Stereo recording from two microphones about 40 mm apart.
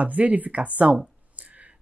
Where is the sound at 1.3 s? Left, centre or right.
Right.